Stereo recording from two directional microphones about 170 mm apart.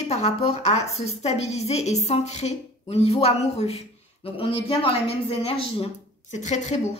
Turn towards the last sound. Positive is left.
turn(degrees=45)  # may be behind; listen again after turning